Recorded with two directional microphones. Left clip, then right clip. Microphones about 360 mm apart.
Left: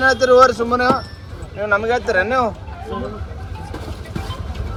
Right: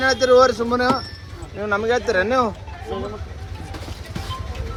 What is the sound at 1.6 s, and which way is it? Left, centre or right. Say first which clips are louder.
Speech: left 3 dB; centre.